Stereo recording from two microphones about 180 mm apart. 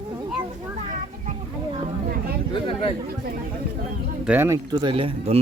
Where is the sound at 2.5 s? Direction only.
30° left (ahead or behind).